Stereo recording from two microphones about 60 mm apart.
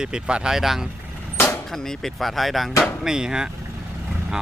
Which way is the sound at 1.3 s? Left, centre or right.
Left.